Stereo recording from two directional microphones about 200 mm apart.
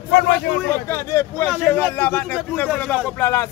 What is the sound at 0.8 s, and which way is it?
A man's voice, 10° left (ahead or behind).